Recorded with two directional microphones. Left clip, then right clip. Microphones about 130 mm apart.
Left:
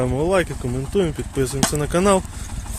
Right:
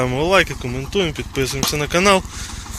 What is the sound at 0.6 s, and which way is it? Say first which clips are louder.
Speech: right 1 dB; 40° left (ahead or behind).